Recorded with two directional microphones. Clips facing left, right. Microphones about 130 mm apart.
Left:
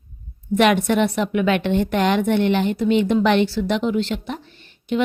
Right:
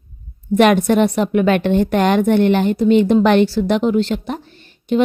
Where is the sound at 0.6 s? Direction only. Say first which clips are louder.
Right 4 dB; 40° right (ahead or behind).